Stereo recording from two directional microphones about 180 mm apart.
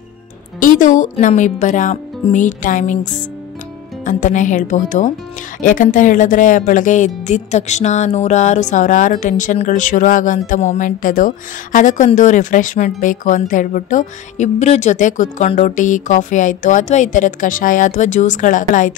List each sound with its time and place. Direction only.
0.6 s a woman's voice: 45° left (ahead or behind)
4.0 s a woman's voice: 45° left (ahead or behind)